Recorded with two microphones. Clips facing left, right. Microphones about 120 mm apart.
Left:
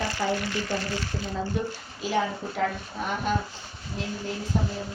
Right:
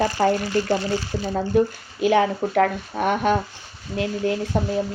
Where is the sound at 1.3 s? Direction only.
60° right (ahead or behind); by 4.4 s 75° right (ahead or behind).